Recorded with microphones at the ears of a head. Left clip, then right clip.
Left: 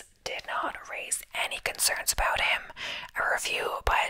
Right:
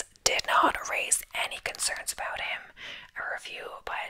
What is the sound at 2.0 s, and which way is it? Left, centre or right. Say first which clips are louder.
Whispering: left 7 dB; left.